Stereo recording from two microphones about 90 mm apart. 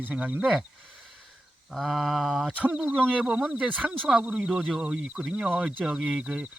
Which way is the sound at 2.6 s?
15° right (ahead or behind).